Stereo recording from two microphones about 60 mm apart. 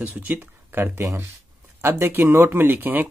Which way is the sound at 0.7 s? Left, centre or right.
Right.